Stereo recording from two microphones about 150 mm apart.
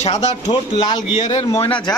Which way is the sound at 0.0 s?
45° left (ahead or behind).